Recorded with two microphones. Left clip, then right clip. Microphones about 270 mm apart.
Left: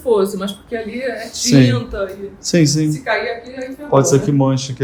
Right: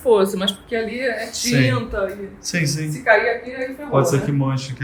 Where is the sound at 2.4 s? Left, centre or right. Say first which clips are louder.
Left 9 dB; centre.